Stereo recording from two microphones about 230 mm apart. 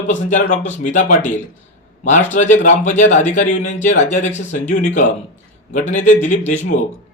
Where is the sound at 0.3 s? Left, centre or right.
Left.